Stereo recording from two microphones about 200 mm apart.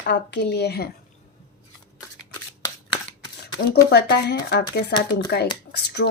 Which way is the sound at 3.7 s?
55° left (ahead or behind).